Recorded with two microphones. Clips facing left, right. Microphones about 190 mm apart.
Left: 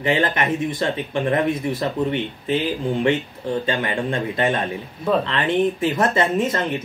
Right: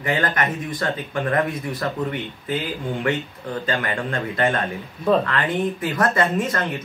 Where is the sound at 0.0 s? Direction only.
25° left (ahead or behind).